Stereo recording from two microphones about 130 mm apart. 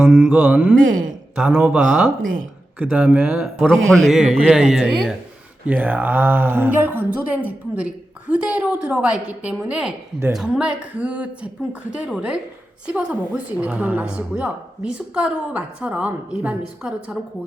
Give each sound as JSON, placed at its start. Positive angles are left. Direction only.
{"t": 0.1, "sound": "a woman's voice", "side_deg": -15}
{"t": 0.9, "sound": "speech", "side_deg": -90}
{"t": 1.4, "sound": "a woman's voice", "side_deg": -10}